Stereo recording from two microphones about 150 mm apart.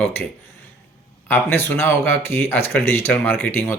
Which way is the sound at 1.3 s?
15° left (ahead or behind).